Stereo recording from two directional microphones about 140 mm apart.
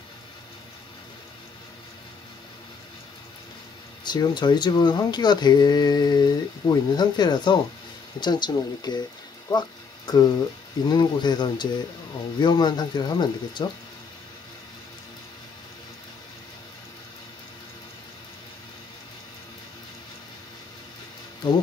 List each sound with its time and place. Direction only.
4.0 s speech: 30° left (ahead or behind)